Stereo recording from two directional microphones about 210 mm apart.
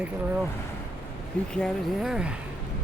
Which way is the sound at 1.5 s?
Centre (ahead or behind).